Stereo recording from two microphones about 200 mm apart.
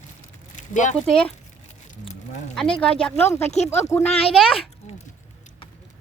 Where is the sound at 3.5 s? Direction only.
35° left (ahead or behind).